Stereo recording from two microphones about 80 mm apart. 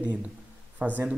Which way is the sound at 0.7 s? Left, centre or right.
Centre.